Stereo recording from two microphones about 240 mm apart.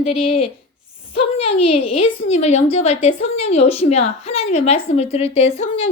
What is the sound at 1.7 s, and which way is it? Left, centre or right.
A woman's voice, left.